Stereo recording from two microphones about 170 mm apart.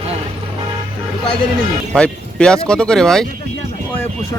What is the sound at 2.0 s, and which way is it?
A man's voice, 5° left (ahead or behind).